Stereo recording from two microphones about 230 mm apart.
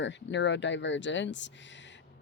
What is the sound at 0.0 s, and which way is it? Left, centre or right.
Speech, left.